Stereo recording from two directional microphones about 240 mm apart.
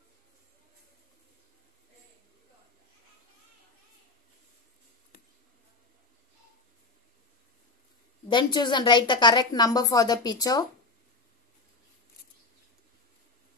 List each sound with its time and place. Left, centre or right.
8.3 s a woman's voice: centre